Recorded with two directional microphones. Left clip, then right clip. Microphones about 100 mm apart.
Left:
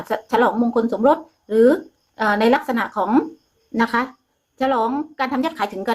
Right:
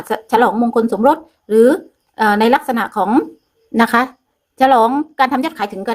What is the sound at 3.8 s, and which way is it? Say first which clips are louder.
A woman's voice: right 6 dB; 55° right (ahead or behind).